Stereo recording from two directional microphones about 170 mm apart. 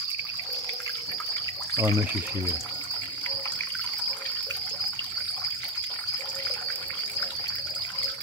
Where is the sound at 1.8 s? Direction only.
20° right (ahead or behind).